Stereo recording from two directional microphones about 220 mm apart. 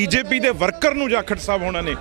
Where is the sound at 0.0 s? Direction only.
10° right (ahead or behind).